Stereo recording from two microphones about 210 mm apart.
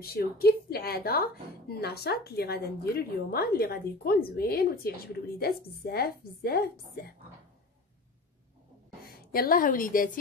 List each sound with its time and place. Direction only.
0.0 s a woman's voice: 45° left (ahead or behind)
9.0 s a woman's voice: 45° left (ahead or behind)